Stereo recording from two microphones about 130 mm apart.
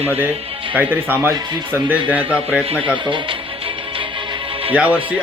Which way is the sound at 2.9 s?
40° right (ahead or behind).